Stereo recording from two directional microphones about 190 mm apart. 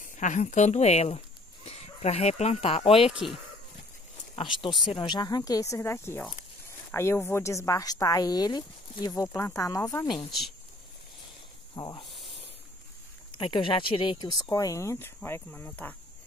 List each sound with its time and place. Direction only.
0.0 s speech: 40° left (ahead or behind)
3.1 s speech: 5° right (ahead or behind)
4.4 s speech: 25° left (ahead or behind)
11.7 s speech: 20° left (ahead or behind)
13.4 s speech: 25° left (ahead or behind); by 16.0 s 10° left (ahead or behind)